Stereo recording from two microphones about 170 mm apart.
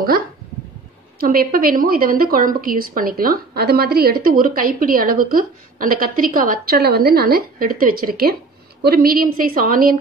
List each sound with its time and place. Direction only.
1.2 s a woman's voice: 60° right (ahead or behind)